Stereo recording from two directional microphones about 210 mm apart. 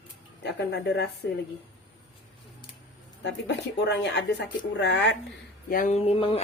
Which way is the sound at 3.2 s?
55° left (ahead or behind).